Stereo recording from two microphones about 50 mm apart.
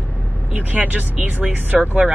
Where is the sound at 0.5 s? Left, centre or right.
Right.